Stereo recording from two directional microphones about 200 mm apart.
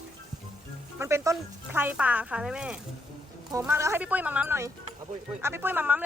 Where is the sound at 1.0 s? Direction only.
15° right (ahead or behind).